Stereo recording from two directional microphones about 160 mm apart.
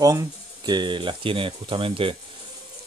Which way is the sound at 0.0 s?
20° right (ahead or behind).